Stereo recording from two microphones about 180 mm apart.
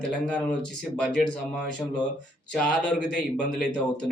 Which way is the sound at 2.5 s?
5° left (ahead or behind).